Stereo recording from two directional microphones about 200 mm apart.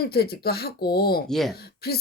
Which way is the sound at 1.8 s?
50° left (ahead or behind).